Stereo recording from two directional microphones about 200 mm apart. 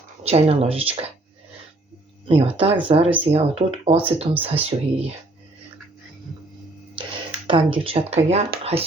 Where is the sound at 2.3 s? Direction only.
30° right (ahead or behind).